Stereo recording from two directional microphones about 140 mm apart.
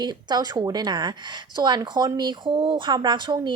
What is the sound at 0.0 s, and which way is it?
A woman's voice, 30° right (ahead or behind).